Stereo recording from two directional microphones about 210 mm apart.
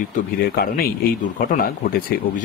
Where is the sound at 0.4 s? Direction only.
45° left (ahead or behind).